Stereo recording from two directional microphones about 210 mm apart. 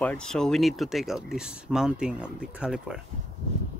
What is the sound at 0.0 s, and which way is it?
Speech, 5° left (ahead or behind).